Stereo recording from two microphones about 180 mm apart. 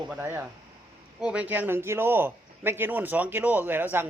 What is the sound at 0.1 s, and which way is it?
A man's voice, 10° right (ahead or behind).